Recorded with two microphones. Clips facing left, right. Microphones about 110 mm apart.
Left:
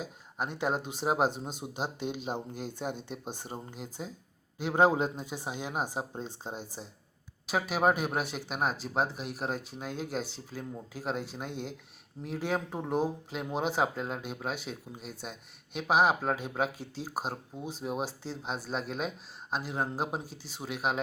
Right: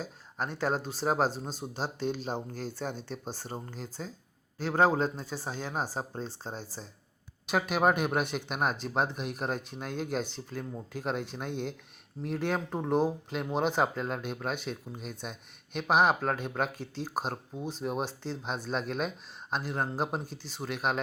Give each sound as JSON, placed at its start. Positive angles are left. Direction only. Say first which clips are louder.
{"t": 0.0, "sound": "speech", "louder": "even", "side_deg": 15}
{"t": 7.4, "sound": "speech", "louder": "right 1 dB", "side_deg": 5}